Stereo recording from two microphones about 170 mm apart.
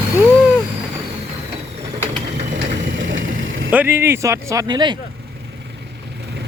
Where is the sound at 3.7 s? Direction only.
10° right (ahead or behind).